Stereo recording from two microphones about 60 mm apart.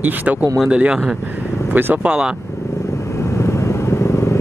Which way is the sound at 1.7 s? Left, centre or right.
Right.